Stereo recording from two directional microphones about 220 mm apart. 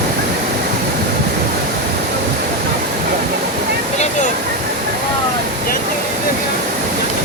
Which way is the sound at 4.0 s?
35° left (ahead or behind).